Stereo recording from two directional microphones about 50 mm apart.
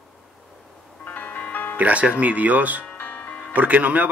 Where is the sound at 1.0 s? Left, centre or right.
Left.